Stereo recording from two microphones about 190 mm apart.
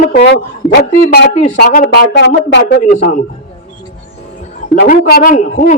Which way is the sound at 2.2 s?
65° left (ahead or behind).